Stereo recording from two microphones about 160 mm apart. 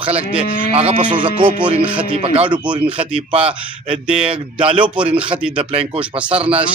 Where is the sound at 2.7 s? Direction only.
10° right (ahead or behind).